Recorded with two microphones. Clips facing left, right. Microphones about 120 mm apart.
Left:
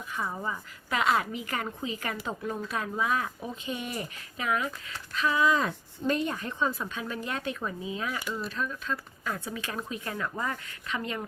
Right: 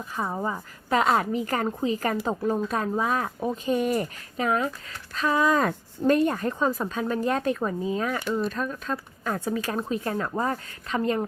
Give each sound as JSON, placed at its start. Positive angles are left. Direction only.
{"t": 0.1, "sound": "speech", "side_deg": -35}